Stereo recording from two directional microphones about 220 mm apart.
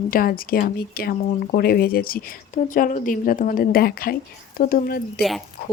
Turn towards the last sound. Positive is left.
turn(degrees=45)  # may be behind; listen again after turning